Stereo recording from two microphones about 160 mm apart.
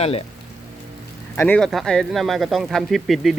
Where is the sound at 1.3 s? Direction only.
15° left (ahead or behind).